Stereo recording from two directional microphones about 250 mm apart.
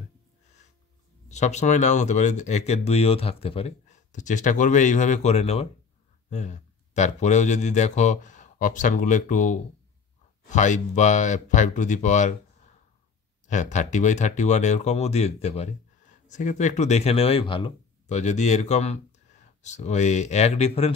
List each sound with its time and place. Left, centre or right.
1.3 s speech: left
13.5 s speech: left